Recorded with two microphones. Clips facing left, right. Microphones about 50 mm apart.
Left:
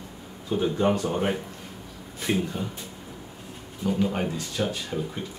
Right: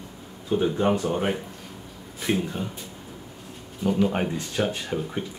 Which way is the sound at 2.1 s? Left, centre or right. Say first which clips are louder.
Right 1 dB; centre.